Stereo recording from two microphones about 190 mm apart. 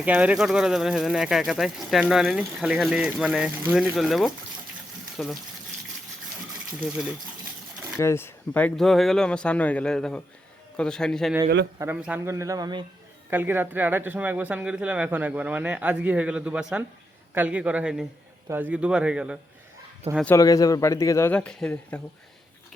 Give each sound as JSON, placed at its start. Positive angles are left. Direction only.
{"t": 0.0, "sound": "speech", "side_deg": -5}
{"t": 7.9, "sound": "speech", "side_deg": 15}
{"t": 20.3, "sound": "a man's voice", "side_deg": 20}